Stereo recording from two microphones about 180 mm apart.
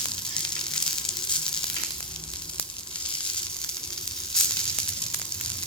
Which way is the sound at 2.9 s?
5° left (ahead or behind).